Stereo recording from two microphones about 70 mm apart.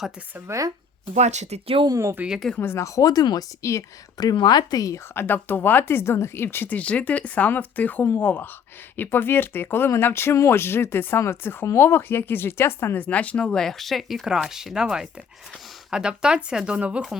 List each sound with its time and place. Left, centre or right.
0.4 s speech: right
2.2 s speech: right
2.6 s speech: left
2.8 s speech: left
3.6 s speech: left
4.2 s speech: left
5.1 s speech: left
6.7 s speech: centre
13.0 s speech: centre